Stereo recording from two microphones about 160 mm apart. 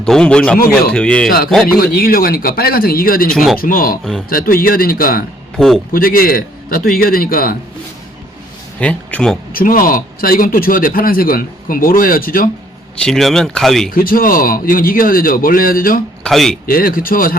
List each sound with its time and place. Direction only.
0.0 s speech: 5° left (ahead or behind)
1.8 s a man's voice: 70° left (ahead or behind)
3.3 s speech: centre (ahead or behind)
3.6 s a man's voice: 65° left (ahead or behind)
5.5 s speech: 5° left (ahead or behind)
5.9 s a man's voice: 65° left (ahead or behind)
8.8 s speech: 5° left (ahead or behind)
9.5 s a man's voice: 60° left (ahead or behind)
13.0 s speech: 5° left (ahead or behind)
13.9 s a man's voice: 65° left (ahead or behind)
16.2 s speech: centre (ahead or behind)
16.6 s a man's voice: 65° left (ahead or behind)